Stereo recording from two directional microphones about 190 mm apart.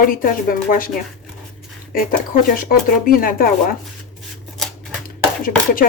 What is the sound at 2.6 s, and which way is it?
Speech, 50° left (ahead or behind).